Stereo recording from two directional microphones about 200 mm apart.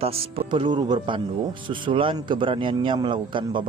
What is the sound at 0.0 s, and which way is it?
A man's voice, 30° right (ahead or behind).